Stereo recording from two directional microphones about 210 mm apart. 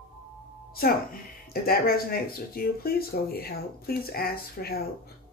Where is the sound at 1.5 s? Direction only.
45° left (ahead or behind).